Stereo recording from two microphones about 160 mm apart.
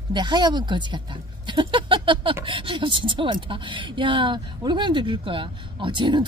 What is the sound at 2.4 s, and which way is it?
A woman's voice, 30° right (ahead or behind).